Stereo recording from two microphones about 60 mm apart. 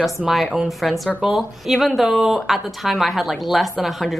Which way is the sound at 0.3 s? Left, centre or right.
Centre.